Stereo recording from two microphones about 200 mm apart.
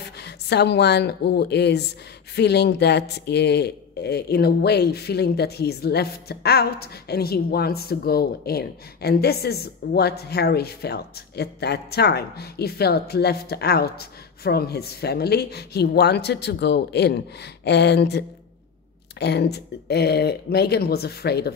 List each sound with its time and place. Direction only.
0.2 s a woman's voice: 55° left (ahead or behind)